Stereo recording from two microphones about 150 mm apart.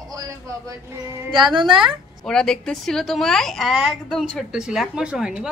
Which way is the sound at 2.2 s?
5° left (ahead or behind).